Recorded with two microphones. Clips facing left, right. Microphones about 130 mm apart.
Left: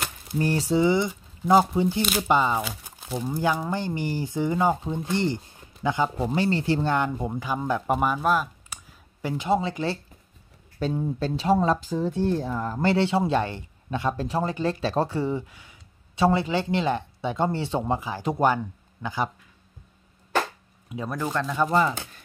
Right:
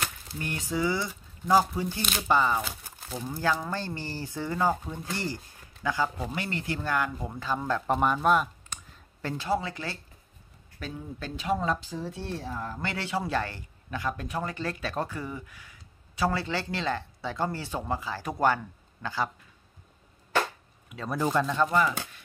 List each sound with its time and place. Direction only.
0.4 s speech: 30° left (ahead or behind)
2.0 s speech: 5° left (ahead or behind)
2.2 s speech: 20° left (ahead or behind)
7.3 s speech: 15° left (ahead or behind)
9.2 s speech: 20° left (ahead or behind)
12.1 s speech: 50° left (ahead or behind)
12.9 s speech: 25° left (ahead or behind)
21.2 s speech: 15° right (ahead or behind)
21.6 s speech: 35° left (ahead or behind)